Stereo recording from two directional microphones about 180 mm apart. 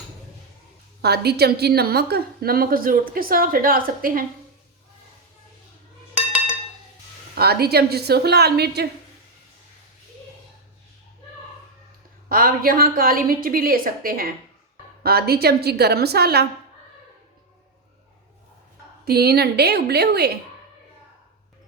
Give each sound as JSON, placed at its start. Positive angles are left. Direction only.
{"t": 1.0, "sound": "a woman's voice", "side_deg": -65}
{"t": 7.3, "sound": "a woman's voice", "side_deg": -60}
{"t": 12.3, "sound": "a woman's voice", "side_deg": -55}
{"t": 19.0, "sound": "a woman's voice", "side_deg": -60}